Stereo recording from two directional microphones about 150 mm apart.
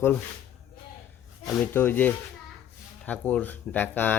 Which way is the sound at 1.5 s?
15° left (ahead or behind).